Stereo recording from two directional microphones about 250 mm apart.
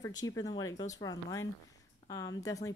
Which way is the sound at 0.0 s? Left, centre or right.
Centre.